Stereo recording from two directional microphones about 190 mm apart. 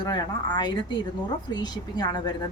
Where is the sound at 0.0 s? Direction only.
20° left (ahead or behind).